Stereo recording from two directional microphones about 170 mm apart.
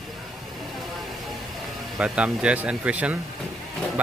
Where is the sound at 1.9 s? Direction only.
5° right (ahead or behind).